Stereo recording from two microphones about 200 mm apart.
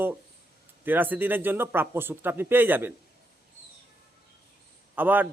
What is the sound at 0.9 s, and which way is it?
Speech, 10° right (ahead or behind).